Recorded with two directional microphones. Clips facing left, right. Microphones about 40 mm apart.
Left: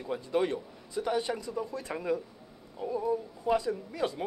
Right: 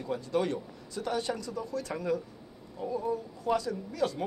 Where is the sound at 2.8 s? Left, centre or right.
Centre.